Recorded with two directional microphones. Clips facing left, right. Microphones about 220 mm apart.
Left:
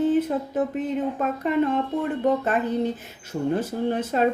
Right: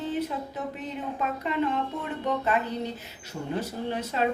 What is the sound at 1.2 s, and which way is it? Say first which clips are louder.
Speech: left 3 dB; 50° left (ahead or behind).